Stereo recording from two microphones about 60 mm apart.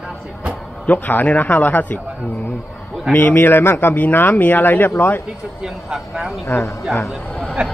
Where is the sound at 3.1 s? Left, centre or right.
Left.